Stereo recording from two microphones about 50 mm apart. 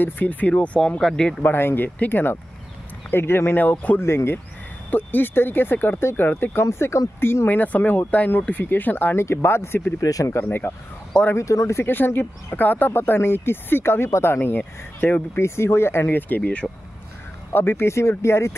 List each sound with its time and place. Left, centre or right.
0.0 s speech: left
0.7 s speech: centre
1.4 s speech: left
4.0 s speech: left
4.9 s speech: left
6.6 s speech: left
7.4 s speech: left
9.2 s speech: left
11.3 s speech: left
11.8 s speech: left
15.3 s speech: left
17.5 s speech: left